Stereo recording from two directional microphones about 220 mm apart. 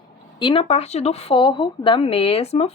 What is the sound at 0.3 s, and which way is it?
A woman's voice, 25° left (ahead or behind).